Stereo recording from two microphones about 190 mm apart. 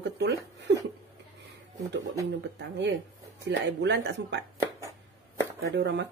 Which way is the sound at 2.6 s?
70° right (ahead or behind).